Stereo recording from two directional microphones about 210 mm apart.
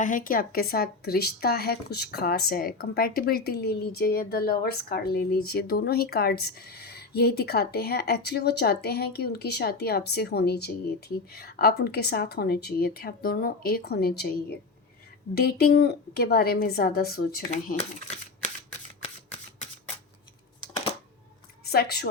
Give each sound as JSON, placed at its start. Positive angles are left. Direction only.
{"t": 0.0, "sound": "speech", "side_deg": 40}
{"t": 15.4, "sound": "speech", "side_deg": 50}
{"t": 21.6, "sound": "a woman's voice", "side_deg": 50}